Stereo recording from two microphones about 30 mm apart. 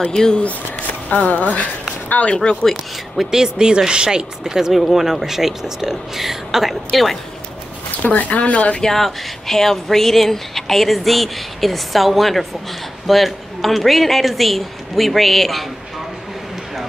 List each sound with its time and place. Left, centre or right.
0.1 s speech: left
1.1 s speech: left
2.3 s speech: left
3.3 s speech: centre
4.9 s speech: centre
8.0 s speech: left
8.8 s speech: centre